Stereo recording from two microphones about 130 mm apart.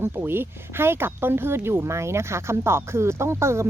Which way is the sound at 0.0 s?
15° right (ahead or behind).